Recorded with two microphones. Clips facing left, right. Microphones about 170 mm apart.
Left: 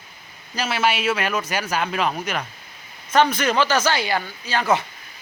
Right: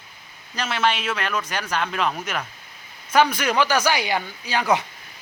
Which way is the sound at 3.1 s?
10° right (ahead or behind).